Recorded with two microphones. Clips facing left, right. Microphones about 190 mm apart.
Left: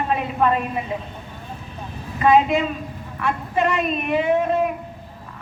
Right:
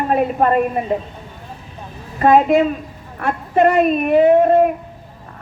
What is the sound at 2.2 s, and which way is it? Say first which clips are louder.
A woman's voice: right 4 dB; 50° right (ahead or behind).